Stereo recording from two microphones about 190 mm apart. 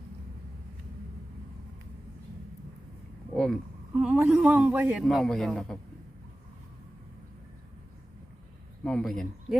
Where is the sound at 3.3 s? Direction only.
Centre (ahead or behind).